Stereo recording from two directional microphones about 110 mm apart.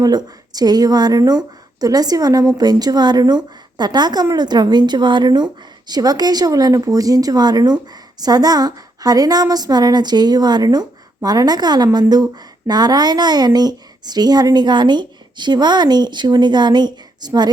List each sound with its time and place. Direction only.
0.0 s a woman's voice: 35° right (ahead or behind)